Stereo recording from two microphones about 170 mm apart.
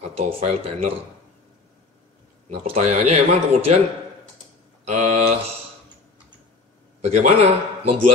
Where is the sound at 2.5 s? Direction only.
40° right (ahead or behind).